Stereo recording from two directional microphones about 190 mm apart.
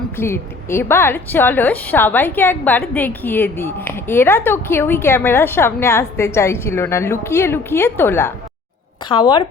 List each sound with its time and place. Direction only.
0.2 s a woman's voice: 15° left (ahead or behind)
9.1 s speech: 30° left (ahead or behind)